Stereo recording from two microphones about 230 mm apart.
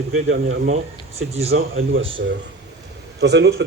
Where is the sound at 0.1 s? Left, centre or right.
Right.